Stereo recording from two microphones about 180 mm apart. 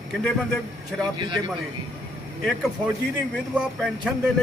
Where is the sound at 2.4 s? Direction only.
Centre (ahead or behind).